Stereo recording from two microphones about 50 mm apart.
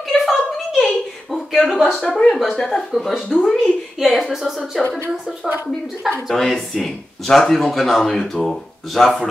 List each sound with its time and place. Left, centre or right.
0.1 s a sound: centre
1.5 s speech: centre
2.0 s speech: centre
2.2 s speech: centre
4.0 s speech: centre
6.2 s speech: centre